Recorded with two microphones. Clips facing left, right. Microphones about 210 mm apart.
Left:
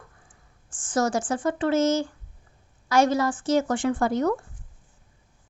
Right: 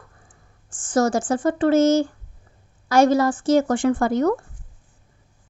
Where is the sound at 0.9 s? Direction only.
40° right (ahead or behind); by 4.4 s 55° right (ahead or behind).